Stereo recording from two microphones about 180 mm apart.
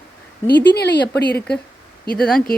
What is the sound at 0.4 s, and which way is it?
Speech, 70° left (ahead or behind).